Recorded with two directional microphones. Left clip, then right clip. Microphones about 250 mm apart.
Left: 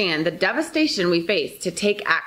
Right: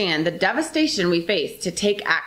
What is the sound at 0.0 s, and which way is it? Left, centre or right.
Speech, left.